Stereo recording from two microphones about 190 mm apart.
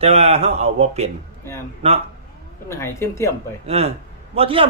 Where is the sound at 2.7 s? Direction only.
15° left (ahead or behind).